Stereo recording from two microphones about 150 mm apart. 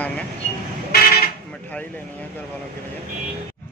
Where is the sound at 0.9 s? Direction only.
90° left.